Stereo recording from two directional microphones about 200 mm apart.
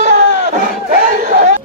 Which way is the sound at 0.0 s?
35° right (ahead or behind).